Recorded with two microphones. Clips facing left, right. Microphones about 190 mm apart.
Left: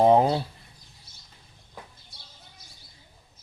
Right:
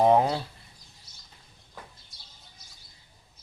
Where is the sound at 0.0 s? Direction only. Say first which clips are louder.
Left 2 dB; 30° left (ahead or behind).